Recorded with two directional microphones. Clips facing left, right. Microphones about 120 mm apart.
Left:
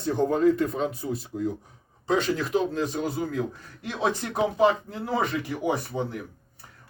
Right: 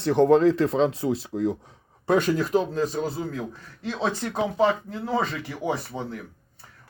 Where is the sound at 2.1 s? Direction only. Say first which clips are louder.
Right 3 dB; 50° right (ahead or behind).